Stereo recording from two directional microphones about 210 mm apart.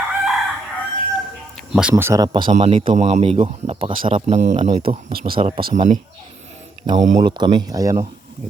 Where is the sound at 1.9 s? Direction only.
15° right (ahead or behind).